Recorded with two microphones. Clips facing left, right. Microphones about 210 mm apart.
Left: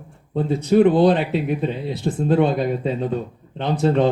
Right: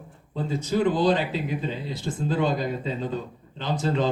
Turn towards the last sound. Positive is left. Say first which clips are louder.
# left 7 dB
turn(degrees=60)  # may be behind; listen again after turning